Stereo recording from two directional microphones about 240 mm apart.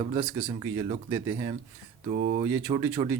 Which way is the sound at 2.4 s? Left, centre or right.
Centre.